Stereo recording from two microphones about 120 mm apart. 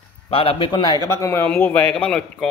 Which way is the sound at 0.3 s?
50° left (ahead or behind).